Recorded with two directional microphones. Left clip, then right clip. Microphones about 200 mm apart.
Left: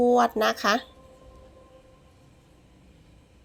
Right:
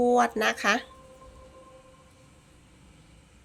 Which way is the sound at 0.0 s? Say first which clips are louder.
Left 2 dB; 10° left (ahead or behind).